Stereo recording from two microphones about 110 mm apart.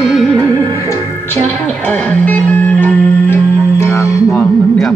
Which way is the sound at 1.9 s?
10° left (ahead or behind).